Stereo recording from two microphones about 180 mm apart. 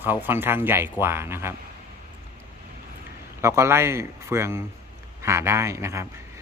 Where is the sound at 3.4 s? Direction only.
15° right (ahead or behind).